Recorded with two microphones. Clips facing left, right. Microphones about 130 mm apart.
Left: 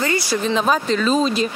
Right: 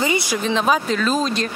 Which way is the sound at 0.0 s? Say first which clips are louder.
Even; 15° right (ahead or behind).